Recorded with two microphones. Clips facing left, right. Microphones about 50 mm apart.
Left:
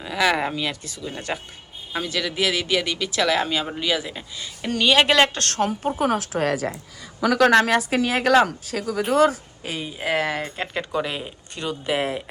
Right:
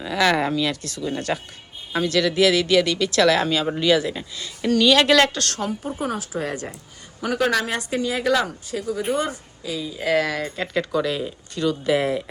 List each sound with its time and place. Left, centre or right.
0.0 s speech: centre
4.4 s speech: centre
5.4 s a woman's voice: left
6.0 s speech: left
8.4 s speech: left
9.6 s speech: left
10.0 s speech: left